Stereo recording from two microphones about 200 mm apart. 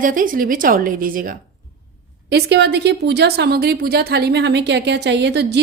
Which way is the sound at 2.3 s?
55° right (ahead or behind).